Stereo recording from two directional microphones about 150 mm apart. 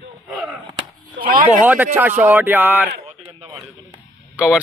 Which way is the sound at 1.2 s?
70° right (ahead or behind).